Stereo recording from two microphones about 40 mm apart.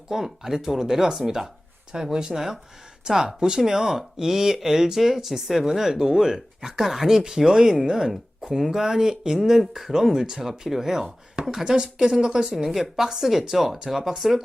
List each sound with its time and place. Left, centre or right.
0.3 s speech: centre